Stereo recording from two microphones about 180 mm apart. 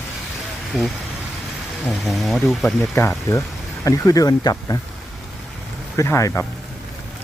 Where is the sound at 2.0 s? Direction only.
Centre (ahead or behind).